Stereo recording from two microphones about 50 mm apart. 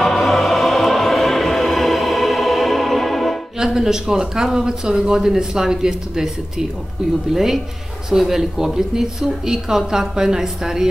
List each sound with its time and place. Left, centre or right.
0.0 s music: centre
3.5 s speech: centre